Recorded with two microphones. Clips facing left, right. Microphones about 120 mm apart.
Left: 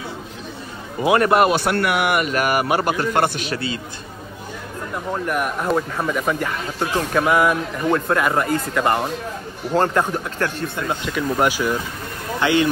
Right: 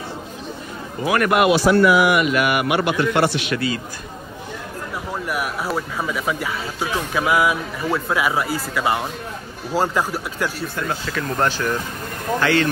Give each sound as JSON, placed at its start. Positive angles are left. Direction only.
{"t": 1.0, "sound": "a man's voice", "side_deg": 30}
{"t": 1.5, "sound": "a man's voice", "side_deg": 55}
{"t": 3.5, "sound": "speech", "side_deg": 25}
{"t": 4.9, "sound": "speech", "side_deg": -5}
{"t": 11.1, "sound": "speech", "side_deg": 10}